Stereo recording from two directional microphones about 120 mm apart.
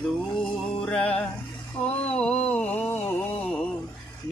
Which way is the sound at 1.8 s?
10° left (ahead or behind).